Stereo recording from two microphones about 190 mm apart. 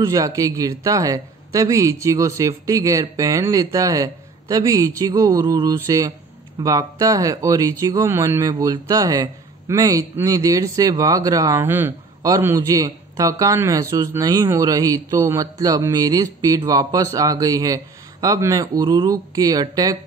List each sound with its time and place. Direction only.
0.1 s speech: 20° right (ahead or behind)